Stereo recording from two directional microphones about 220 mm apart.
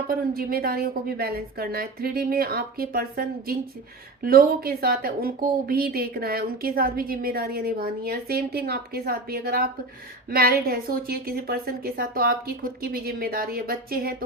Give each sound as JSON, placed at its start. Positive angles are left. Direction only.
{"t": 0.1, "sound": "speech", "side_deg": -40}